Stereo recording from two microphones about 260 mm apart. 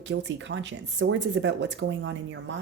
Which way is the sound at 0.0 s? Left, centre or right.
Right.